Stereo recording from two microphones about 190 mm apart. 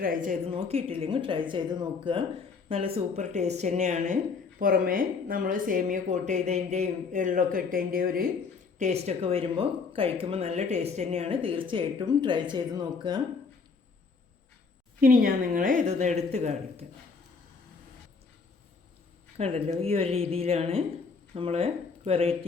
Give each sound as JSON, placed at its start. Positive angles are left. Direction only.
{"t": 0.0, "sound": "a woman's voice", "side_deg": -45}
{"t": 0.5, "sound": "a woman's voice", "side_deg": -30}
{"t": 4.6, "sound": "a woman's voice", "side_deg": -50}
{"t": 8.8, "sound": "speech", "side_deg": -35}
{"t": 15.0, "sound": "a woman's voice", "side_deg": -50}
{"t": 19.4, "sound": "a woman's voice", "side_deg": -30}